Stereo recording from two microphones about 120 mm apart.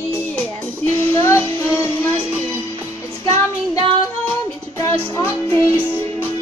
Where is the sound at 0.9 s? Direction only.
20° left (ahead or behind).